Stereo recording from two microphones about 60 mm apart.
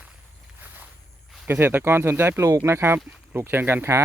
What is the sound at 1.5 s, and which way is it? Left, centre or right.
Speech, right.